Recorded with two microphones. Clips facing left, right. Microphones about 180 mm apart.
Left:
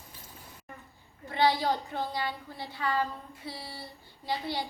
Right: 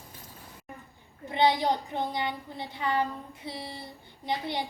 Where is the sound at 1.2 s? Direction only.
20° right (ahead or behind).